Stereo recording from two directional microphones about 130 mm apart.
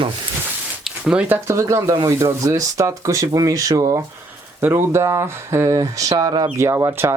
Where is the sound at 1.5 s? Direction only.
25° right (ahead or behind).